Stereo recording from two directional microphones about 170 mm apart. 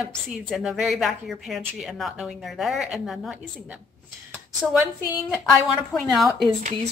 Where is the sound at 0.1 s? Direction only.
Centre (ahead or behind).